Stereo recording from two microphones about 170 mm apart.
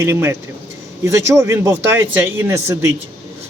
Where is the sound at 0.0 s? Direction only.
15° right (ahead or behind).